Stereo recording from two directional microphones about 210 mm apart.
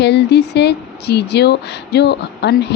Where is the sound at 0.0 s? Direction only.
55° left (ahead or behind).